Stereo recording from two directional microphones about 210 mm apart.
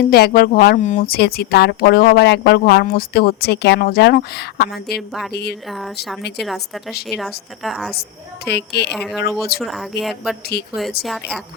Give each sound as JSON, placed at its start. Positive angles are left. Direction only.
{"t": 0.0, "sound": "speech", "side_deg": 45}
{"t": 5.6, "sound": "a woman's voice", "side_deg": 0}
{"t": 8.4, "sound": "speech", "side_deg": 50}
{"t": 8.9, "sound": "a woman's voice", "side_deg": 0}
{"t": 10.5, "sound": "speech", "side_deg": 50}
{"t": 11.0, "sound": "a woman's voice", "side_deg": 0}